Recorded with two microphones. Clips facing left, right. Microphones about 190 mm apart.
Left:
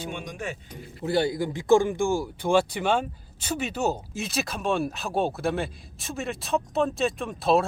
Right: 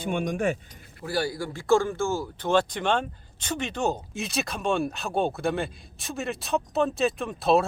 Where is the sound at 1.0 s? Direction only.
20° left (ahead or behind).